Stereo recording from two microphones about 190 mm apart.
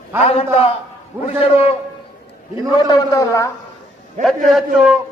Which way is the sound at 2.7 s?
20° left (ahead or behind).